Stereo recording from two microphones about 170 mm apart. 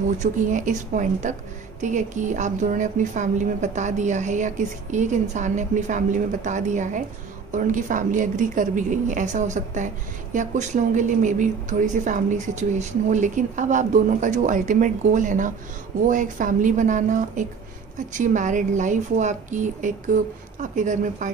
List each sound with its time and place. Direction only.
0.2 s a woman's voice: 50° right (ahead or behind)